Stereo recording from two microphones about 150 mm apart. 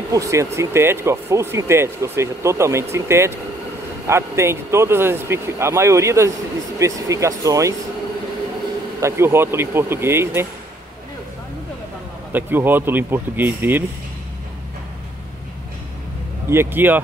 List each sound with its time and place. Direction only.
0.1 s speech: 20° right (ahead or behind)
9.0 s speech: 15° right (ahead or behind)
12.3 s speech: 15° right (ahead or behind)
16.4 s speech: 15° right (ahead or behind)